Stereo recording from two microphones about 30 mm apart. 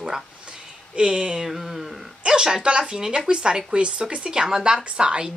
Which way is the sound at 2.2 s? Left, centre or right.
Right.